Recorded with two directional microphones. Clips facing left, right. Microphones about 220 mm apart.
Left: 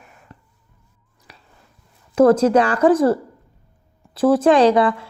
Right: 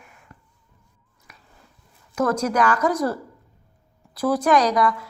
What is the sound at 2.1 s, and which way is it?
A woman's voice, 30° left (ahead or behind).